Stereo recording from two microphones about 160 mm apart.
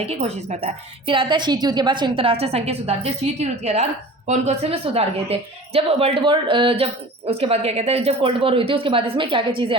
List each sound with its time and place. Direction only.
0.0 s a woman's voice: 40° right (ahead or behind)
1.0 s a woman's voice: 30° right (ahead or behind)